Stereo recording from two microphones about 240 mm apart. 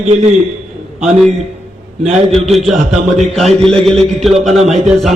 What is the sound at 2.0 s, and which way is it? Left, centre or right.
Speech, right.